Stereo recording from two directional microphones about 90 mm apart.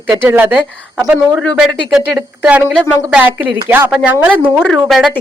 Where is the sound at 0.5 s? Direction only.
10° right (ahead or behind).